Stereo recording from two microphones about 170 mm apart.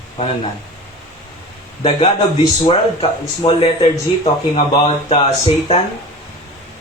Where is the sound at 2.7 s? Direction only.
35° left (ahead or behind).